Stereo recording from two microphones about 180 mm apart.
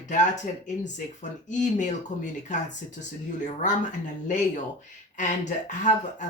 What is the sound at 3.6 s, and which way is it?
Speech, 45° left (ahead or behind).